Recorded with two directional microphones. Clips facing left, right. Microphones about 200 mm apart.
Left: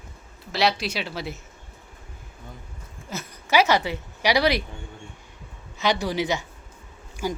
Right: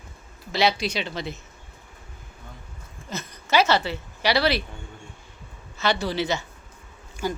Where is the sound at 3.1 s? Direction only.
10° left (ahead or behind).